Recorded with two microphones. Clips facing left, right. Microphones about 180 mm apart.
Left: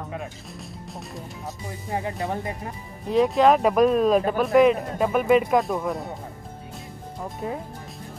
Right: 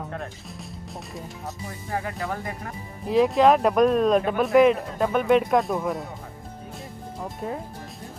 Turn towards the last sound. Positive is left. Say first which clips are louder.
# left 1 dB
turn(degrees=0)  # may be behind; listen again after turning